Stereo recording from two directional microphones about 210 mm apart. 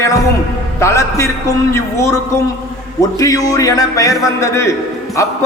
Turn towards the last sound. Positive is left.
turn(degrees=15)  # may be behind; listen again after turning